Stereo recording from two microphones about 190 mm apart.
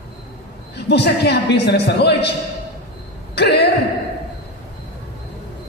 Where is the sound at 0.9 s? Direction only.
60° left (ahead or behind).